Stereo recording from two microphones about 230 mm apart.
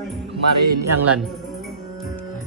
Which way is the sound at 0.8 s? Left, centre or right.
Right.